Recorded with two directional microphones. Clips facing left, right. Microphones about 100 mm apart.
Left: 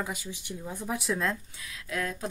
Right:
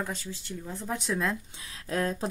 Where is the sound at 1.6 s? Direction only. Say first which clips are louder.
Right 4 dB; 35° right (ahead or behind).